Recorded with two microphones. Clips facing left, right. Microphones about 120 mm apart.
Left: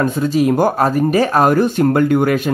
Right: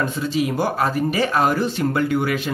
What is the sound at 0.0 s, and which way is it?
Speech, 45° left (ahead or behind).